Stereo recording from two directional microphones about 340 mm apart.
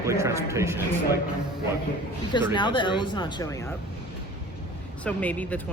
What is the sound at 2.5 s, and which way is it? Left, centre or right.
Speech, centre.